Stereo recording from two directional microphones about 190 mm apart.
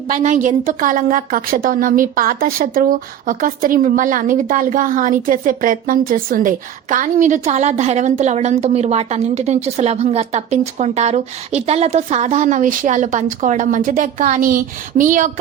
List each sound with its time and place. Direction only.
0.1 s a woman's voice: 40° right (ahead or behind)